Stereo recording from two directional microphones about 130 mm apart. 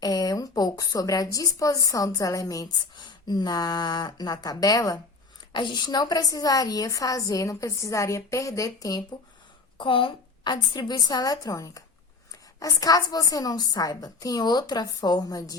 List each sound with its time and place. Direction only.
0.0 s a woman's voice: 30° left (ahead or behind)
9.7 s a woman's voice: 40° left (ahead or behind)